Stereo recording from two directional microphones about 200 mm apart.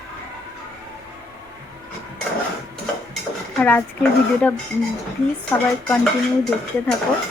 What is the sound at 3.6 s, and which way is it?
Speech, 5° left (ahead or behind).